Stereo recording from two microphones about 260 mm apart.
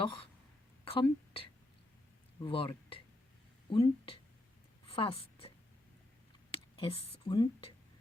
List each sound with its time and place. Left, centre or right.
0.0 s a woman's voice: centre
6.7 s a woman's voice: left